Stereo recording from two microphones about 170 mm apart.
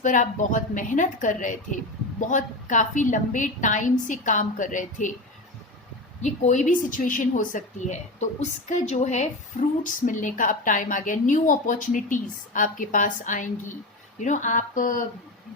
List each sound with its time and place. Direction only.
0.0 s a woman's voice: 50° left (ahead or behind)
6.2 s a woman's voice: 45° left (ahead or behind)